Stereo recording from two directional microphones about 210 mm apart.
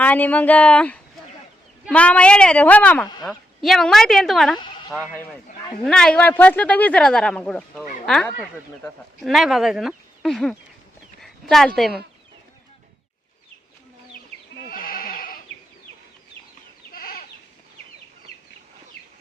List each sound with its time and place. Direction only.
0.0 s speech: 5° left (ahead or behind)
5.1 s speech: 10° left (ahead or behind)
14.7 s neigh: 45° left (ahead or behind)
16.9 s chicken: 45° left (ahead or behind)